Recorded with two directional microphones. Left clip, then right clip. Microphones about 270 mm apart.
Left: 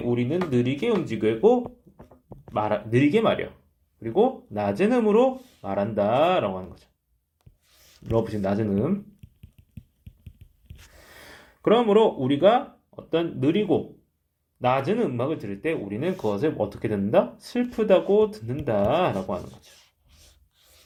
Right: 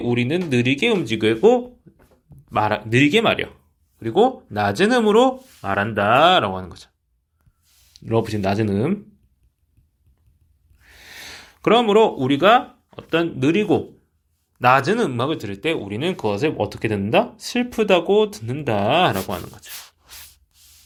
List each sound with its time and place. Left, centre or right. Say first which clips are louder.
0.1 s speech: right 4 dB; right
8.1 s speech: right 4 dB; right
11.1 s a sound: right 10 dB; right
11.7 s speech: right 4 dB; right